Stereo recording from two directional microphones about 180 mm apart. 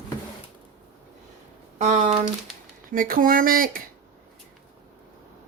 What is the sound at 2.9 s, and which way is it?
Speech, 50° right (ahead or behind).